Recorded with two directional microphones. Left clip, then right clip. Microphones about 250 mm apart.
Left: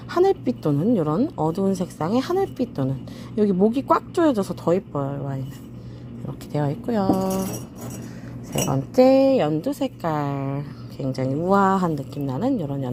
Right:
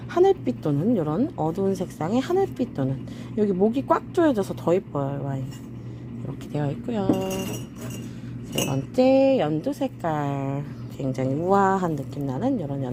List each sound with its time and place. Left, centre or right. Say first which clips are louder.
0.1 s a woman's voice: even; centre
6.5 s speech: left 4 dB; centre
8.7 s a woman's voice: left 4 dB; left